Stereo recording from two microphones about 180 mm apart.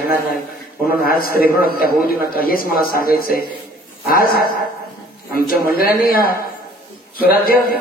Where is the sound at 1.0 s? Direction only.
55° left (ahead or behind).